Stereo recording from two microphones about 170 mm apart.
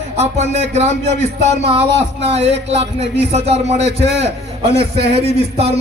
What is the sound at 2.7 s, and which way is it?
A man's voice, 40° right (ahead or behind).